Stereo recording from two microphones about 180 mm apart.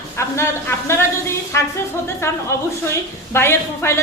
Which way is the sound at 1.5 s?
15° left (ahead or behind).